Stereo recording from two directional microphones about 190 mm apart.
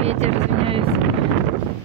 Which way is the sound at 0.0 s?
35° right (ahead or behind).